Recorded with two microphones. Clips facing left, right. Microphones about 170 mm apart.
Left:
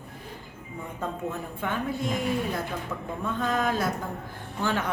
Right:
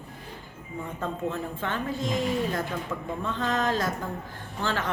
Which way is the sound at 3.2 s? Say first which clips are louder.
Left 1 dB; 10° left (ahead or behind).